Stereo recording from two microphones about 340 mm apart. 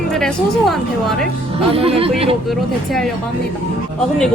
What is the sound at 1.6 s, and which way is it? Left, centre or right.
Speech, centre.